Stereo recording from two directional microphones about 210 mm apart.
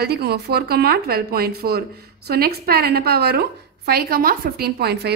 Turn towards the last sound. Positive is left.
turn(degrees=-50)  # may be behind; listen again after turning